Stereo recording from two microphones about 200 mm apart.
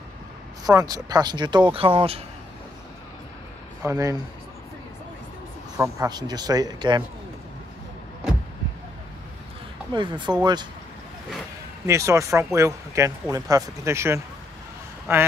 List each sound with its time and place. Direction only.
0.7 s speech: 20° right (ahead or behind)
3.8 s speech: 15° right (ahead or behind)
5.8 s speech: 20° right (ahead or behind)
9.9 s speech: 25° right (ahead or behind)
11.8 s speech: 15° right (ahead or behind)